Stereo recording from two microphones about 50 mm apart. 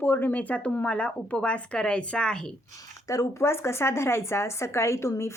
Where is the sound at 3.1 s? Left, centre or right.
Left.